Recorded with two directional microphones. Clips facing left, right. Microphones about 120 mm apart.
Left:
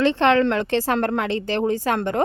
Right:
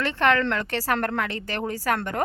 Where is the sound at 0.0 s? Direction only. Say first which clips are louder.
Left 5 dB; 20° left (ahead or behind).